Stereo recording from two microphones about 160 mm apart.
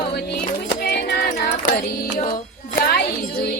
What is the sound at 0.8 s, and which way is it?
Music, 90° left.